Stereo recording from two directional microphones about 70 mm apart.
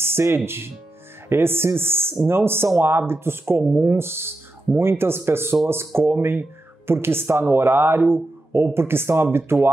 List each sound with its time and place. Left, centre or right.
0.0 s music: right
1.3 s speech: right